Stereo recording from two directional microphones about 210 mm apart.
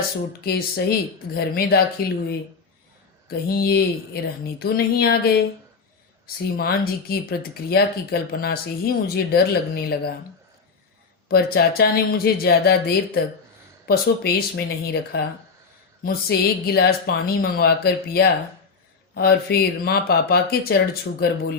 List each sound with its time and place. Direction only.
0.4 s speech: 45° left (ahead or behind)
3.2 s speech: 45° left (ahead or behind)
11.3 s speech: 45° left (ahead or behind)